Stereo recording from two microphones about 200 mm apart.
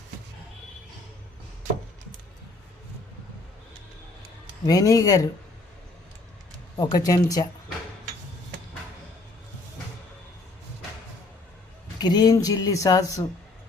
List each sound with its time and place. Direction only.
4.6 s speech: 20° left (ahead or behind)
6.7 s speech: 20° left (ahead or behind)
11.9 s speech: 20° left (ahead or behind)